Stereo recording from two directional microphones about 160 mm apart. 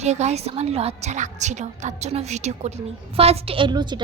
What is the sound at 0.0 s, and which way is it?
A woman's voice, 45° right (ahead or behind).